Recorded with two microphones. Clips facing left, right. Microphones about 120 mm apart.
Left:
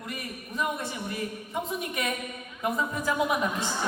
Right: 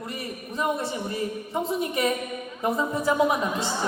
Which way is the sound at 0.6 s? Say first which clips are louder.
Right 4 dB; 30° right (ahead or behind).